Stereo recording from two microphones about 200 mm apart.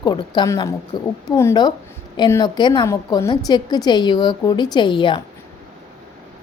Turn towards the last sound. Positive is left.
turn(degrees=25)  # may be behind; listen again after turning